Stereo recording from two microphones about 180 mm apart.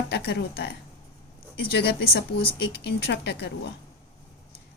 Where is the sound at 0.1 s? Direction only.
65° left (ahead or behind).